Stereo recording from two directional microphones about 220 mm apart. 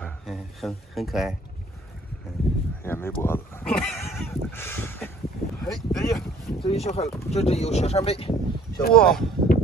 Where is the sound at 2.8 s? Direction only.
10° left (ahead or behind).